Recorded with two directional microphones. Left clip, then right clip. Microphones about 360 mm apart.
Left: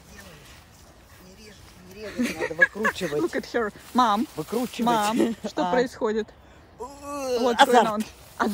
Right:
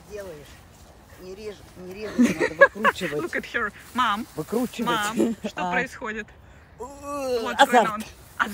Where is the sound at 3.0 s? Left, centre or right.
Centre.